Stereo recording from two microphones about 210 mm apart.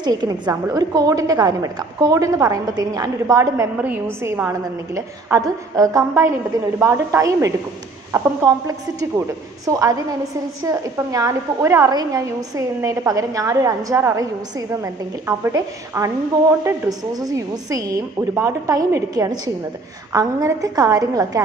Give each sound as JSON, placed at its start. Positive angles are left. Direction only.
{"t": 0.0, "sound": "a woman's voice", "side_deg": -20}